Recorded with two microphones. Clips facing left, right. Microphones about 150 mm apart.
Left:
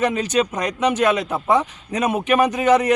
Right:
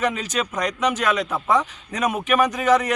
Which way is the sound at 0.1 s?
35° left (ahead or behind).